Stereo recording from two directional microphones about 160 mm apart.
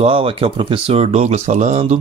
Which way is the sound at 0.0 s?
35° right (ahead or behind).